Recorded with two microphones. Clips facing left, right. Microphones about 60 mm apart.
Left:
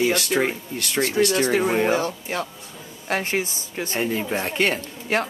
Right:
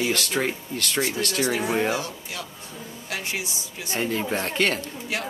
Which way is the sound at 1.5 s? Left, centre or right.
Left.